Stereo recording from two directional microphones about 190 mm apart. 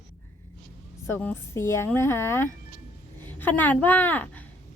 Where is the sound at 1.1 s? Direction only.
10° left (ahead or behind).